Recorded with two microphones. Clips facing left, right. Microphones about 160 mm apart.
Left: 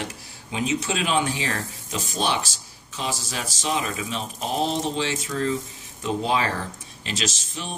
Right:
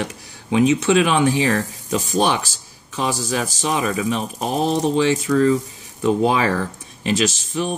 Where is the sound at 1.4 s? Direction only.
45° right (ahead or behind).